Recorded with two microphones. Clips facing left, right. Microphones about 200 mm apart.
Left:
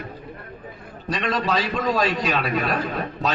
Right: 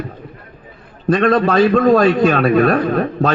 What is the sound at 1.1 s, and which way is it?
A man's voice, 55° right (ahead or behind).